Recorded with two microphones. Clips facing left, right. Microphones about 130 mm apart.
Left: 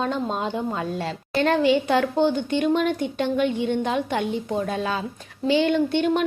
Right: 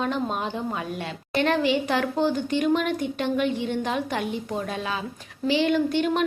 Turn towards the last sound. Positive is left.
turn(degrees=30)  # may be behind; listen again after turning